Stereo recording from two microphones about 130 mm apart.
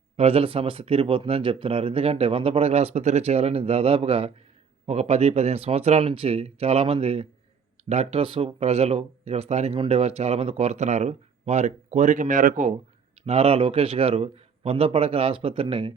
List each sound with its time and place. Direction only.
0.2 s speech: 50° right (ahead or behind); by 12.7 s 80° right
13.2 s speech: 50° right (ahead or behind)